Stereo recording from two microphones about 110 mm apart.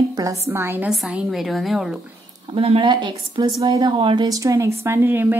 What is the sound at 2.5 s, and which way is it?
Speech, 55° right (ahead or behind).